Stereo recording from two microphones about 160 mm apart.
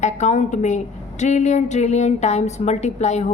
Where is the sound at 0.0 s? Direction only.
45° left (ahead or behind).